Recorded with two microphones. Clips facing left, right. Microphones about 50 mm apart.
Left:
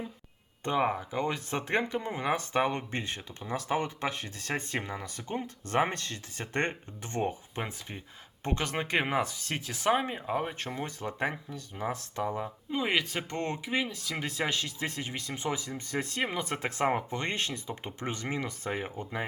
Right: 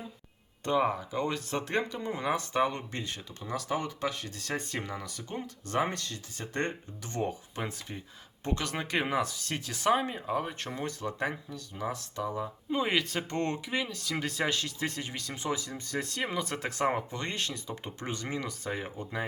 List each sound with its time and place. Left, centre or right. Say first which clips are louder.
0.6 s speech: right 1 dB; left
12.7 s speech: right 1 dB; centre; by 19.2 s left